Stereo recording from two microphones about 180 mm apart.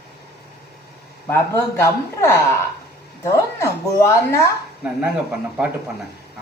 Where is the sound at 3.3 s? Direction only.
15° left (ahead or behind).